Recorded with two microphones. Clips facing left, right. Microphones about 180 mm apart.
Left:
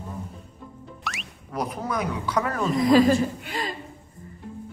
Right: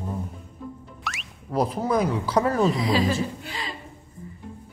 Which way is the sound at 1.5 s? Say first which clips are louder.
Right 5 dB; 30° right (ahead or behind).